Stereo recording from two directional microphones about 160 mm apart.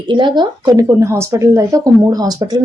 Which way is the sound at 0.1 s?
30° right (ahead or behind).